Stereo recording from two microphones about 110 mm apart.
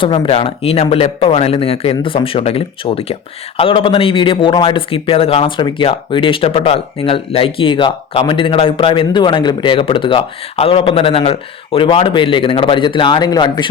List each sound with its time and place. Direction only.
0.0 s a man's voice: 50° left (ahead or behind)